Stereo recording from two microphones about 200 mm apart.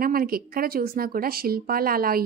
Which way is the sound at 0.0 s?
45° right (ahead or behind).